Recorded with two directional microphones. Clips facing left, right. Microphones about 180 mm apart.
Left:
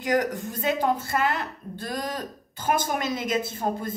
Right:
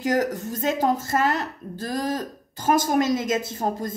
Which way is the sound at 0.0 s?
40° right (ahead or behind).